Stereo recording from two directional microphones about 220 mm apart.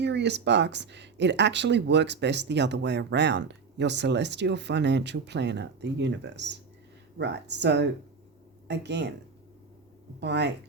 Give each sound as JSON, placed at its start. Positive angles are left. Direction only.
{"t": 0.0, "sound": "speech", "side_deg": -50}
{"t": 10.2, "sound": "speech", "side_deg": -50}